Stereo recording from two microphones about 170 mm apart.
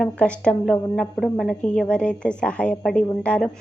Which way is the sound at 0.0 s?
5° left (ahead or behind).